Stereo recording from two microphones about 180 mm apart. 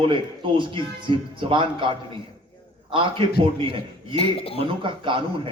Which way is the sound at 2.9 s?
30° right (ahead or behind).